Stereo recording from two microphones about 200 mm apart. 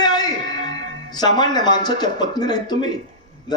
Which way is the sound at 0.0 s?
20° left (ahead or behind).